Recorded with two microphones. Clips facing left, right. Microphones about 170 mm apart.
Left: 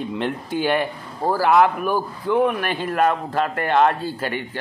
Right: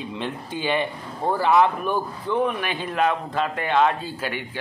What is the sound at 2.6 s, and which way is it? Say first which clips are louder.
Speech: left 3 dB; 50° left (ahead or behind).